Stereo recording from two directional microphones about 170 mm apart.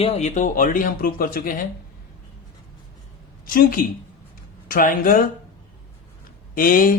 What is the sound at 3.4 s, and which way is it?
A woman's voice, 55° left (ahead or behind).